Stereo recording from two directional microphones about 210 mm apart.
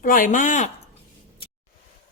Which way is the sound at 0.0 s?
40° left (ahead or behind).